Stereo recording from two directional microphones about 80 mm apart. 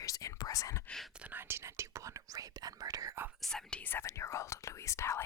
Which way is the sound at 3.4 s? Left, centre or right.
Centre.